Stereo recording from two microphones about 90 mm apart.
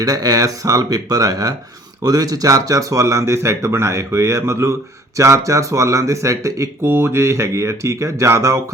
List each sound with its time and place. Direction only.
0.0 s speech: 45° right (ahead or behind)